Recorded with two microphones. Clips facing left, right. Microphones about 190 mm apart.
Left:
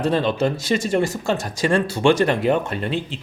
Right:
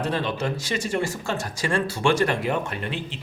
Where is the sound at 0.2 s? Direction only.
30° left (ahead or behind).